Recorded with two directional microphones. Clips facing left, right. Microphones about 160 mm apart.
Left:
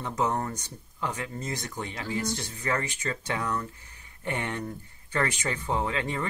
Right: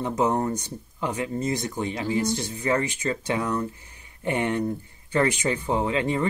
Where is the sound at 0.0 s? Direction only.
20° right (ahead or behind).